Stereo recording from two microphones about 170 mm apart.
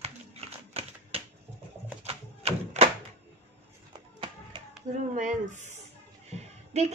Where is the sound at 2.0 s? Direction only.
35° right (ahead or behind).